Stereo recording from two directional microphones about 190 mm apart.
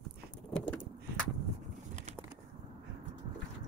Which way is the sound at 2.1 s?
45° right (ahead or behind).